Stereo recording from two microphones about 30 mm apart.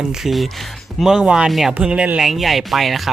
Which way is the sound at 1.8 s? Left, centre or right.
Right.